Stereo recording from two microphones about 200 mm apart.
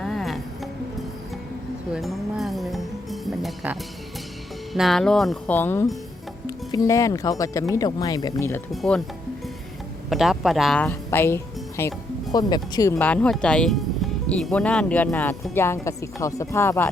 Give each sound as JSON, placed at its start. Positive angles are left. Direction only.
{"t": 0.0, "sound": "music", "side_deg": 0}
{"t": 1.9, "sound": "music", "side_deg": 0}
{"t": 4.7, "sound": "speech", "side_deg": 0}
{"t": 8.7, "sound": "speech", "side_deg": 0}
{"t": 10.1, "sound": "speech", "side_deg": 0}